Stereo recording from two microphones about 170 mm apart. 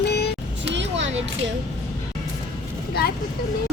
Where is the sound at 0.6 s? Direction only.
90° right.